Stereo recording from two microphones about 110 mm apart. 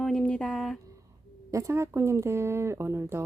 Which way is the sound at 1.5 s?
30° right (ahead or behind).